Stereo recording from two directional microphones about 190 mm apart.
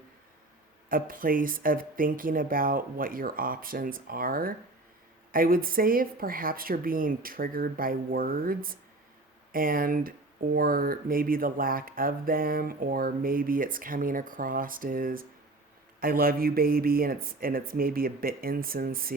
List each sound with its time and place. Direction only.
0.9 s speech: 45° right (ahead or behind)